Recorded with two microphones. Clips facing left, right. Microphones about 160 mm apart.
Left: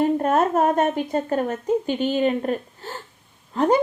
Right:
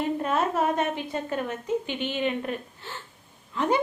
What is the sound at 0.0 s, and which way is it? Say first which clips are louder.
A woman's voice: left 7 dB; 45° left (ahead or behind).